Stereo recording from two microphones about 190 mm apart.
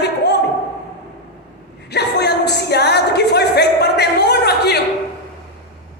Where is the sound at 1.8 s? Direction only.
60° left (ahead or behind).